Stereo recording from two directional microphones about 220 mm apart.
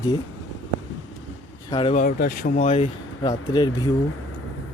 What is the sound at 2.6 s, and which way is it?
Speech, 30° left (ahead or behind).